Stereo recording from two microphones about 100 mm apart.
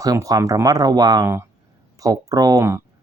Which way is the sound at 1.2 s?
25° right (ahead or behind).